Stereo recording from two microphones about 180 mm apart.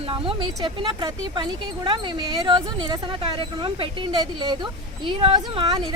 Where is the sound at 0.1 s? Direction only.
30° right (ahead or behind).